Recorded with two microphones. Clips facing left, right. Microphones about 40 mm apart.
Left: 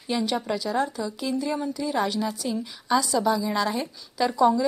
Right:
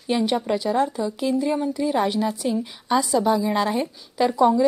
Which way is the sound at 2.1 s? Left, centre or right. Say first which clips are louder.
Right 4 dB; right.